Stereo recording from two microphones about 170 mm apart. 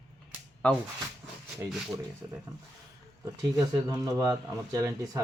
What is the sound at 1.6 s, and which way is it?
Speech, 15° right (ahead or behind).